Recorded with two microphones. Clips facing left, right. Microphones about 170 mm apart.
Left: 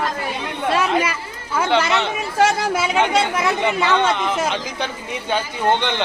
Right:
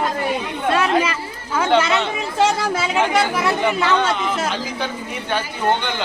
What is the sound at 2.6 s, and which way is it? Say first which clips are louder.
A man's voice: left 1 dB; 20° left (ahead or behind).